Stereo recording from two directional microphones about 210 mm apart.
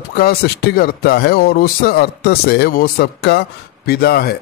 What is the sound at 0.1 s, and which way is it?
A man's voice, 50° left (ahead or behind).